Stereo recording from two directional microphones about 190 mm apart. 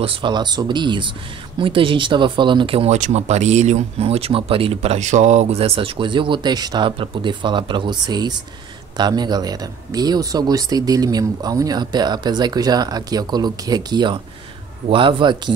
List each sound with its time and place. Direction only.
0.0 s speech: 25° right (ahead or behind)